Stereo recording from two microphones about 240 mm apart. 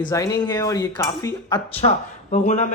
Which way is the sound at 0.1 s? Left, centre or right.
Centre.